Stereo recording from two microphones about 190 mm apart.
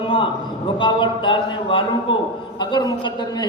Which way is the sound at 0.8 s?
25° left (ahead or behind).